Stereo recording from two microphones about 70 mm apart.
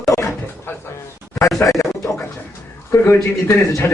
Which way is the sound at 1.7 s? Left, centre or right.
Left.